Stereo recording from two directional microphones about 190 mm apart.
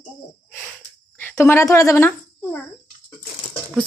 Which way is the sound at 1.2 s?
15° left (ahead or behind).